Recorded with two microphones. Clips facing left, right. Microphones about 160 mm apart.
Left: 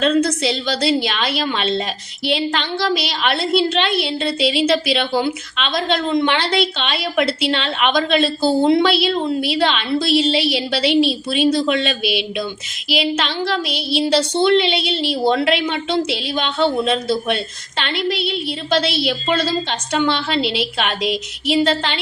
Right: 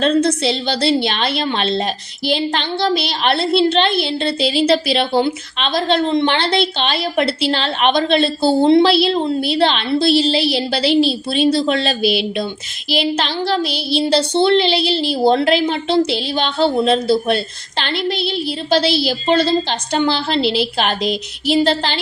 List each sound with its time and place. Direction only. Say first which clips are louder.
0.0 s a woman's voice: right 2 dB; 30° right (ahead or behind)